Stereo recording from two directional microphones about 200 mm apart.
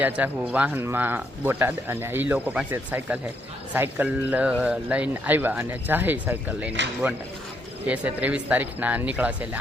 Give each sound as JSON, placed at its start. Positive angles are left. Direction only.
{"t": 0.0, "sound": "speech", "side_deg": -5}
{"t": 7.9, "sound": "speech", "side_deg": -5}